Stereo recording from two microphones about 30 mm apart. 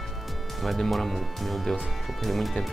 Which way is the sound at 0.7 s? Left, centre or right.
Centre.